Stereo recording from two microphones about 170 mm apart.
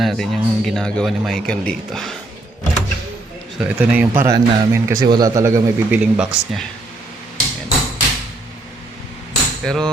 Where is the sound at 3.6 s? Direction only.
5° right (ahead or behind).